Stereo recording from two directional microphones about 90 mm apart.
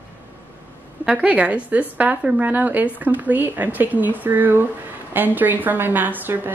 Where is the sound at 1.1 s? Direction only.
15° right (ahead or behind).